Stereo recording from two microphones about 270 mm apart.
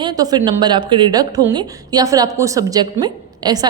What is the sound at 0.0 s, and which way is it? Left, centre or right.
A woman's voice, centre.